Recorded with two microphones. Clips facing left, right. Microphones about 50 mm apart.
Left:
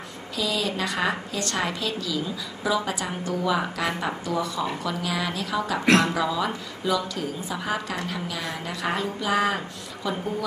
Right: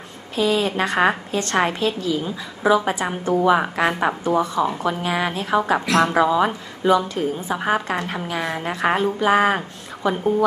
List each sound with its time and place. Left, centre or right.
0.4 s a woman's voice: right